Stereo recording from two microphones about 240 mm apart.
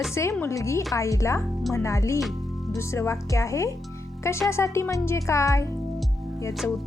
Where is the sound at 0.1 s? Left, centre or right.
Centre.